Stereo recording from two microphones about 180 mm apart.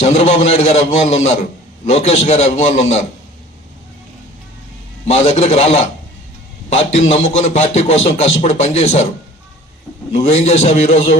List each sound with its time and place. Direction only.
0.0 s speech: 35° left (ahead or behind)
5.0 s speech: 35° left (ahead or behind)
10.1 s speech: 35° left (ahead or behind)